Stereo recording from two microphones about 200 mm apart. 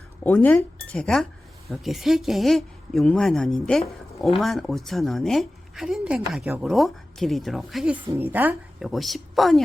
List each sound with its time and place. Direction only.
0.2 s a woman's voice: 10° left (ahead or behind)